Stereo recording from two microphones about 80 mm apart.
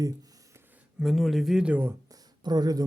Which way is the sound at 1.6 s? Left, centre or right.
Centre.